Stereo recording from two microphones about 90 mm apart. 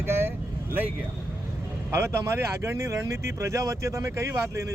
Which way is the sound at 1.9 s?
30° right (ahead or behind).